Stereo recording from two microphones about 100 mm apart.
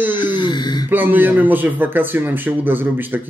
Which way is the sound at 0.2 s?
50° left (ahead or behind).